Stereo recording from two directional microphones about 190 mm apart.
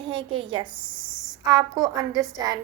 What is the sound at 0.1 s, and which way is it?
A woman's voice, 25° right (ahead or behind).